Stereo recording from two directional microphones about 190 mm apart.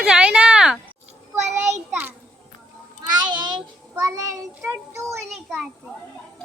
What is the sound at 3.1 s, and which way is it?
Child singing, 25° right (ahead or behind).